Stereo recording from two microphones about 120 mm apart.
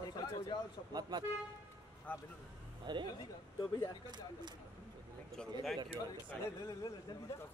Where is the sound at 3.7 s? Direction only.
30° left (ahead or behind).